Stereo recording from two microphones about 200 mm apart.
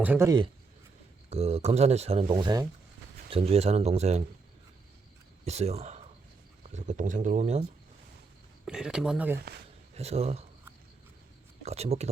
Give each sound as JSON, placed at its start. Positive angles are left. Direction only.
{"t": 0.0, "sound": "a man's voice", "side_deg": -10}
{"t": 1.3, "sound": "speech", "side_deg": -30}
{"t": 5.5, "sound": "speech", "side_deg": -30}
{"t": 8.6, "sound": "speech", "side_deg": -5}
{"t": 9.9, "sound": "speech", "side_deg": -30}
{"t": 11.6, "sound": "speech", "side_deg": -30}